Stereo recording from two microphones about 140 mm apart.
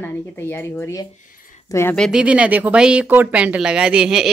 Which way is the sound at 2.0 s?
Centre (ahead or behind).